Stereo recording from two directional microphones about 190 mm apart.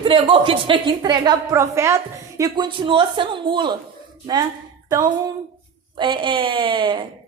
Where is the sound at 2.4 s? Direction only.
25° right (ahead or behind).